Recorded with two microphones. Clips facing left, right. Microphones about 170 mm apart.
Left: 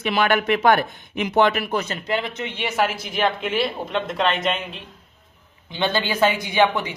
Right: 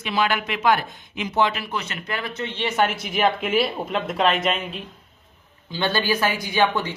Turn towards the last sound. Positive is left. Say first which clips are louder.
# left 2 dB
turn(degrees=15)  # may be behind; listen again after turning